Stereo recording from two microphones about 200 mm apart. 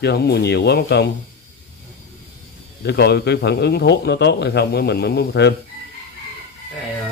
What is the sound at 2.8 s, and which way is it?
Speech, 55° left (ahead or behind).